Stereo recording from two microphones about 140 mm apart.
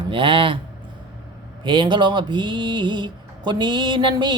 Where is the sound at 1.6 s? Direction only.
35° right (ahead or behind).